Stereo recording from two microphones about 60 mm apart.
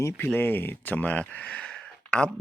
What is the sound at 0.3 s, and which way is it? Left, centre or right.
Speech, left.